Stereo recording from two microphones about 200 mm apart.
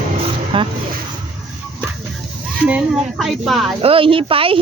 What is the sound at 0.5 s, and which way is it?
Speech, 25° right (ahead or behind).